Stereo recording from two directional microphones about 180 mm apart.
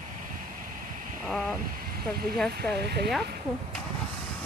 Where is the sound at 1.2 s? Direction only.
Centre (ahead or behind).